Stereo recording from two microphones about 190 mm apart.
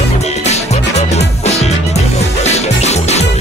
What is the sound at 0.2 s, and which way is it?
Music, 35° left (ahead or behind).